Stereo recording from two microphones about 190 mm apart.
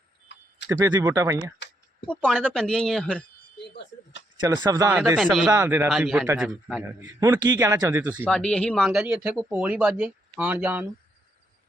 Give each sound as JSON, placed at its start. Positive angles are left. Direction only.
{"t": 0.7, "sound": "a man's voice", "side_deg": -15}
{"t": 2.0, "sound": "speech", "side_deg": 5}
{"t": 3.6, "sound": "a sound", "side_deg": 65}
{"t": 4.4, "sound": "speech", "side_deg": -20}
{"t": 5.1, "sound": "speech", "side_deg": 0}
{"t": 5.5, "sound": "a man's voice", "side_deg": -15}
{"t": 5.9, "sound": "speech", "side_deg": 0}
{"t": 7.0, "sound": "a man's voice", "side_deg": -20}
{"t": 8.3, "sound": "speech", "side_deg": 5}